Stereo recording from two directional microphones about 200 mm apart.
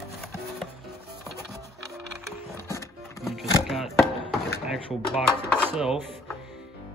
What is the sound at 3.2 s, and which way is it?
Music, centre (ahead or behind).